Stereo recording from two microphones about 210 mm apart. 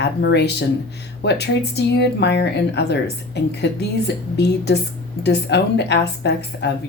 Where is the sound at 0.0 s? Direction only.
55° left (ahead or behind).